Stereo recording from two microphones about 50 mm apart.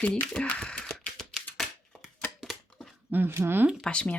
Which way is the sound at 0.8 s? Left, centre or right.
Centre.